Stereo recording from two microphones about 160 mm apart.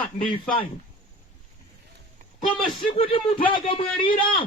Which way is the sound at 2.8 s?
35° left (ahead or behind).